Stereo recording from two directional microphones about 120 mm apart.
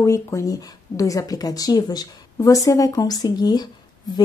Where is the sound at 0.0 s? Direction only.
25° left (ahead or behind).